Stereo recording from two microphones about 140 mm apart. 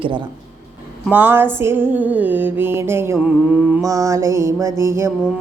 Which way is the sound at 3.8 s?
25° right (ahead or behind).